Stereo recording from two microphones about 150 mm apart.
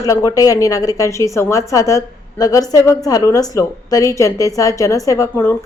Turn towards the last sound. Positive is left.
turn(degrees=20)  # may be behind; listen again after turning